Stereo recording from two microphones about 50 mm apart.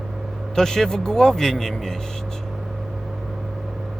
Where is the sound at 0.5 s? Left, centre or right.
Centre.